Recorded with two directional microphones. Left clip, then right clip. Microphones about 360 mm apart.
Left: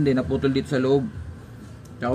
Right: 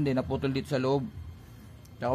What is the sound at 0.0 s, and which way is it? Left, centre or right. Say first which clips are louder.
Speech: left 7 dB; right.